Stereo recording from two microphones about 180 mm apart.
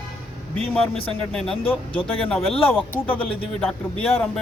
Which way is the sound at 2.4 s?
30° left (ahead or behind).